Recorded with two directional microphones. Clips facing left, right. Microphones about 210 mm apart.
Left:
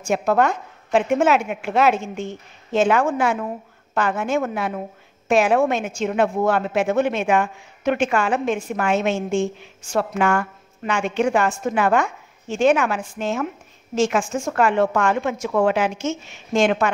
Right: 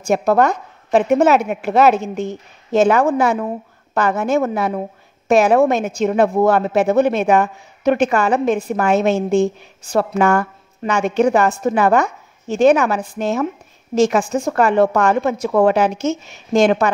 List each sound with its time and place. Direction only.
0.0 s a woman's voice: 35° right (ahead or behind)